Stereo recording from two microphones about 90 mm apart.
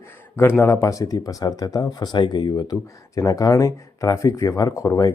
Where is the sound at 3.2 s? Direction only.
40° left (ahead or behind).